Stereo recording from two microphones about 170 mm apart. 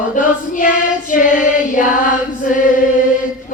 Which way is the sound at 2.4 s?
50° left (ahead or behind).